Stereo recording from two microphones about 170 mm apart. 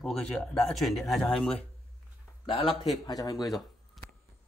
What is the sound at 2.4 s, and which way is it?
Speech, 30° left (ahead or behind).